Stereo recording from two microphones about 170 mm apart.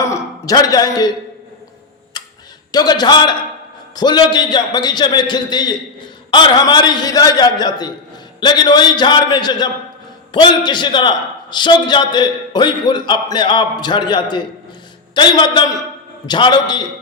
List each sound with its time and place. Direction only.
0.0 s a sound: 20° left (ahead or behind)
2.2 s tick-tock: 25° left (ahead or behind)
2.7 s a man's voice: 25° left (ahead or behind)